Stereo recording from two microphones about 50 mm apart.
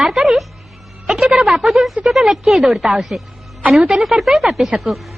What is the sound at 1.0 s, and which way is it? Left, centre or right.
Music, centre.